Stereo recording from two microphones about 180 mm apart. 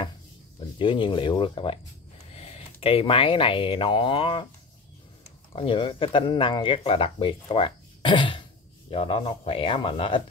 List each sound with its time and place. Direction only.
0.6 s speech: 25° left (ahead or behind)
5.6 s speech: 30° left (ahead or behind)